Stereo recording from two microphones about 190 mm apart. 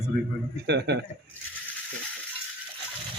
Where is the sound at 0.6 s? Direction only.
60° right (ahead or behind).